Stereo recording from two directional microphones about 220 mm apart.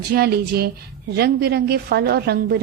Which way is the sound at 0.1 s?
45° right (ahead or behind).